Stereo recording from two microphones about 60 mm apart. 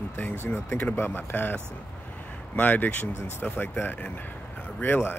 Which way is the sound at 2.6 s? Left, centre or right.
Left.